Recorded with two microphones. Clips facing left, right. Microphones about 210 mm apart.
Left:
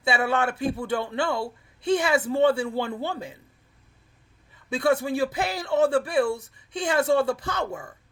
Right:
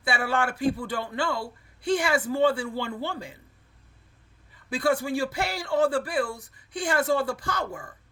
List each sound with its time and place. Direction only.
0.0 s a man's voice: 20° left (ahead or behind)
4.7 s a man's voice: 20° left (ahead or behind)